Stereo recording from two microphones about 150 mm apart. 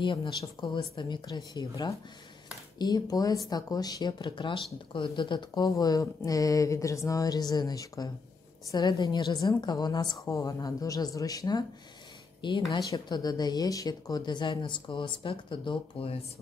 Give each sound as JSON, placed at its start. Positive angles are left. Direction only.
{"t": 0.0, "sound": "a woman's voice", "side_deg": 30}